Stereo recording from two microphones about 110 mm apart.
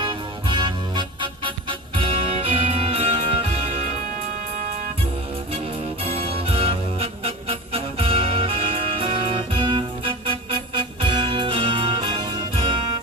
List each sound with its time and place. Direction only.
0.0 s music: 50° right (ahead or behind)
6.1 s music: 60° right (ahead or behind)